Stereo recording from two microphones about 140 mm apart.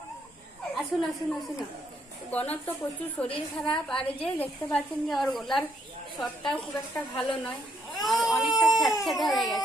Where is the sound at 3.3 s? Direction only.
35° left (ahead or behind).